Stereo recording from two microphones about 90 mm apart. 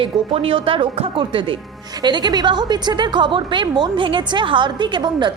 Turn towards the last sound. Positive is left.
turn(degrees=-60)  # may be behind; listen again after turning